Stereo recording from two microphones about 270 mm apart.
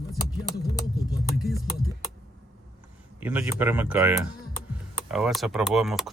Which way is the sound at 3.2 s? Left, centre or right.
Centre.